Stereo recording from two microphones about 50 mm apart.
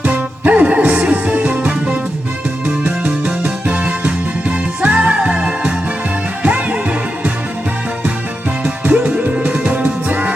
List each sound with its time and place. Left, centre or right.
0.0 s music: right
8.6 s music: right